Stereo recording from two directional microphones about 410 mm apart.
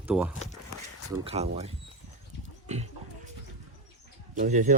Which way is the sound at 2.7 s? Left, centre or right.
Centre.